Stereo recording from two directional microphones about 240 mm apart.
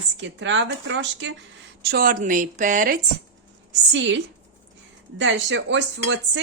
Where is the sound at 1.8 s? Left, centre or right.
Right.